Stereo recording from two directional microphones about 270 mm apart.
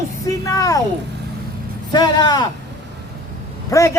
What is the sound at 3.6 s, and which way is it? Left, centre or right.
Speech, centre.